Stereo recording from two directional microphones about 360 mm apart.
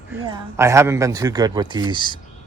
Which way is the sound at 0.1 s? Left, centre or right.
Centre.